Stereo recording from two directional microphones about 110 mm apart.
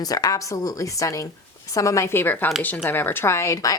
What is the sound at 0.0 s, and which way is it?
A woman's voice, 35° left (ahead or behind).